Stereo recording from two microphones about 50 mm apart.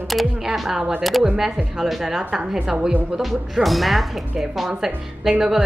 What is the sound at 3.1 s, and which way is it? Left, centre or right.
Speech, centre.